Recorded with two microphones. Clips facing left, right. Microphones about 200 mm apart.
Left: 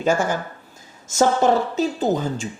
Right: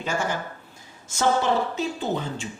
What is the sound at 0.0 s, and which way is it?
Speech, 45° left (ahead or behind).